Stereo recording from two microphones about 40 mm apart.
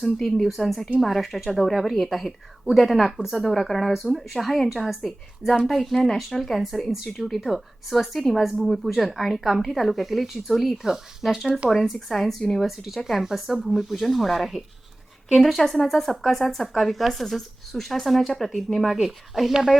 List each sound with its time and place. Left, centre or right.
0.0 s a woman's voice: centre
3.5 s a woman's voice: centre
6.4 s a woman's voice: centre
18.9 s speech: centre